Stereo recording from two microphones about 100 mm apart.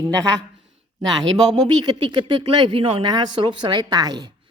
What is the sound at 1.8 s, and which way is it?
A woman's voice, 50° right (ahead or behind).